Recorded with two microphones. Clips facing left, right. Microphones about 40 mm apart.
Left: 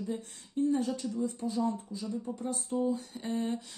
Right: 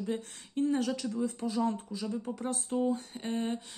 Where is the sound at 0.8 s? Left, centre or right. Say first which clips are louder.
Right 1 dB; right.